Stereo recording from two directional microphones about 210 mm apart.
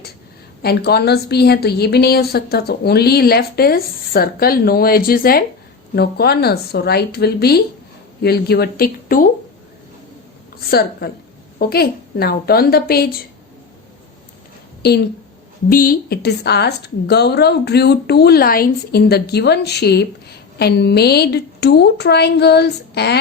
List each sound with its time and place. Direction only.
0.6 s a woman's voice: 50° left (ahead or behind)
10.7 s a woman's voice: 45° left (ahead or behind)
14.8 s a woman's voice: 50° left (ahead or behind)